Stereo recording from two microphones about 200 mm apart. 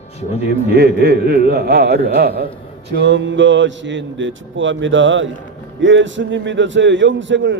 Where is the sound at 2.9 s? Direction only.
60° right (ahead or behind).